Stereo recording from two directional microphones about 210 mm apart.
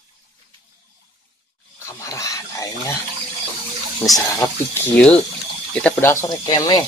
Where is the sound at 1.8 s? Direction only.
15° left (ahead or behind).